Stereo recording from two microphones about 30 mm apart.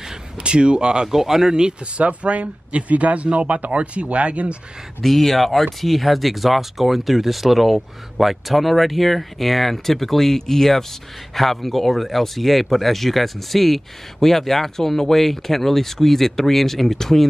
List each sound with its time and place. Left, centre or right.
0.4 s speech: right
1.0 s speech: centre
1.5 s speech: right
2.0 s speech: right
5.0 s speech: centre